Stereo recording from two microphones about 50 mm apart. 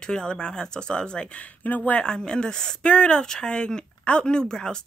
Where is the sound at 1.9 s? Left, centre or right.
Centre.